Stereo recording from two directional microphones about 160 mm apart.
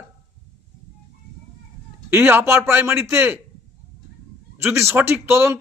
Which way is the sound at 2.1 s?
15° right (ahead or behind).